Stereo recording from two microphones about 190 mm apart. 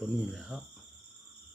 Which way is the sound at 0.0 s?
5° right (ahead or behind).